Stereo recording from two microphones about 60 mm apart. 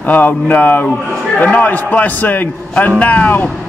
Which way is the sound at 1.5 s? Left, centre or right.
Left.